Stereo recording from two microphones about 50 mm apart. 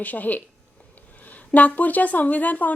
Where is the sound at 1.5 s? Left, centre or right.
Left.